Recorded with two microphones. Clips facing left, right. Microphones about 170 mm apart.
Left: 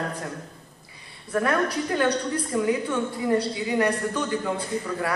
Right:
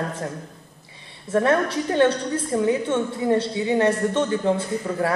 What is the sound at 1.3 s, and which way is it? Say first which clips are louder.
A woman's voice: right 4 dB; 25° right (ahead or behind).